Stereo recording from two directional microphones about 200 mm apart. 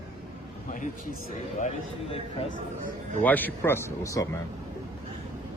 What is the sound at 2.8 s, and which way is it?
Speech, 40° right (ahead or behind).